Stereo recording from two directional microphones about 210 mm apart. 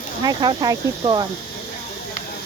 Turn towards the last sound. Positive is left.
turn(degrees=-20)  # may be behind; listen again after turning